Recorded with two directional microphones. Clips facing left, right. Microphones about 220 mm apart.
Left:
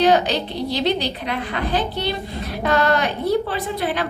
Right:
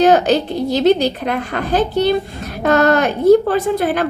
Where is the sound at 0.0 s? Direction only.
45° right (ahead or behind).